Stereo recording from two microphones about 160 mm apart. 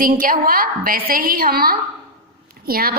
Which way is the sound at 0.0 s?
60° right (ahead or behind).